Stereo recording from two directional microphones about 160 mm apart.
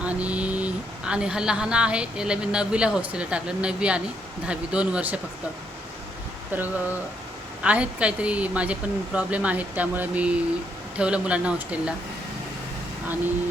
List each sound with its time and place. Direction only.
0.0 s speech: 10° right (ahead or behind)
6.5 s speech: 10° right (ahead or behind)